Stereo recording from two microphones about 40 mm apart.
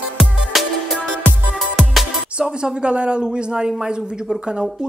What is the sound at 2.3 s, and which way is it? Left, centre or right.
Speech, right.